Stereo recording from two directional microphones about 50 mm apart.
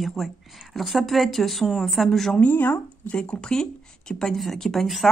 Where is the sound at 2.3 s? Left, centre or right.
Left.